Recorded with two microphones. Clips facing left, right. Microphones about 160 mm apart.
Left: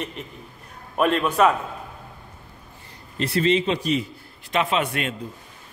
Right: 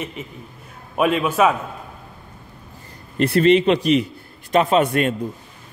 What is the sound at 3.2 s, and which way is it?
Speech, 60° right (ahead or behind).